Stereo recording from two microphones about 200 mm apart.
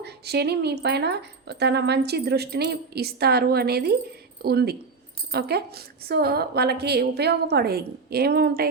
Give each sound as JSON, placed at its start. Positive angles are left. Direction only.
{"t": 0.0, "sound": "a woman's voice", "side_deg": -55}